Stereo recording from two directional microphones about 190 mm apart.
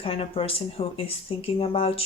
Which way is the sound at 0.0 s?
30° left (ahead or behind).